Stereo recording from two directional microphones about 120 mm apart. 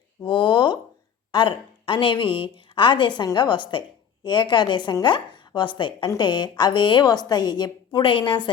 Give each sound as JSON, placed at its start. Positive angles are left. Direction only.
{"t": 0.2, "sound": "a woman's voice", "side_deg": 40}